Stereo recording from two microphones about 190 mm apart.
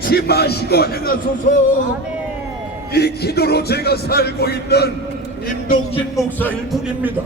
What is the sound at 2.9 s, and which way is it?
Music, 55° left (ahead or behind).